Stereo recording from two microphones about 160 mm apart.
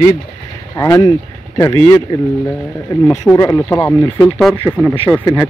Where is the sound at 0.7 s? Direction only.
20° left (ahead or behind).